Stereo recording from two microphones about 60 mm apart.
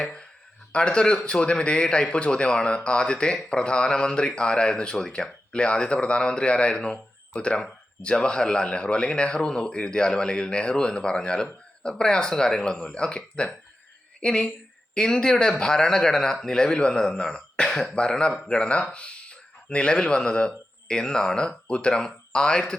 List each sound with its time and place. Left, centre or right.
0.7 s a woman's voice: centre